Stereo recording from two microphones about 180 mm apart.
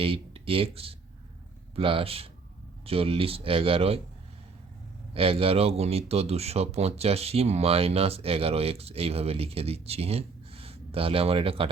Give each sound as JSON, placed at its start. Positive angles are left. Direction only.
{"t": 0.0, "sound": "speech", "side_deg": -30}
{"t": 5.1, "sound": "speech", "side_deg": -30}